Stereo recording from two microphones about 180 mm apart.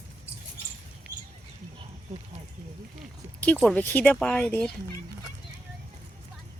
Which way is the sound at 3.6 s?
Centre (ahead or behind).